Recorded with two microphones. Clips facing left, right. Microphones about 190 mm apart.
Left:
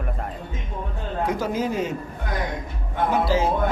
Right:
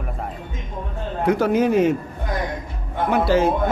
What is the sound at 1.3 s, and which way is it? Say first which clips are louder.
Speech: right 9 dB; 65° right (ahead or behind).